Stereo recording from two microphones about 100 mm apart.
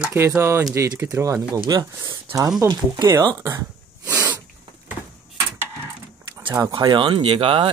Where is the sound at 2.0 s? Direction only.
30° right (ahead or behind).